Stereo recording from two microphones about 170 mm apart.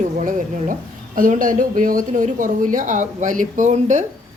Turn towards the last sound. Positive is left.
turn(degrees=-45)  # may be behind; listen again after turning